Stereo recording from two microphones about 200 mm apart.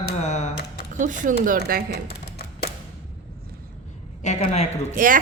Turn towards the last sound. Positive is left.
turn(degrees=-45)  # may be behind; listen again after turning